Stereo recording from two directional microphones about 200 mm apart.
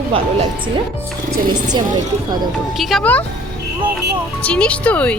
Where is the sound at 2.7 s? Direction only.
5° left (ahead or behind).